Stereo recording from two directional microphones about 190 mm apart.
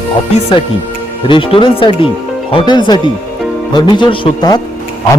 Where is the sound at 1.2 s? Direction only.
25° left (ahead or behind).